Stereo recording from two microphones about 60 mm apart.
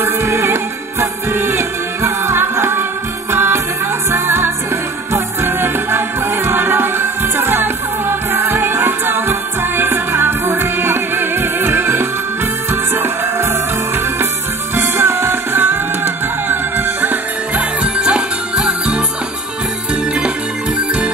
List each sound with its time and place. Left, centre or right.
0.0 s music: right
17.8 s music: centre